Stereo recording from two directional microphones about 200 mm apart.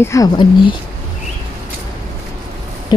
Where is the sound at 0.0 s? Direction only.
15° left (ahead or behind).